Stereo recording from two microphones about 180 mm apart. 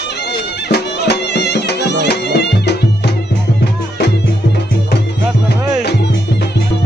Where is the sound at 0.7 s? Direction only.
65° left (ahead or behind).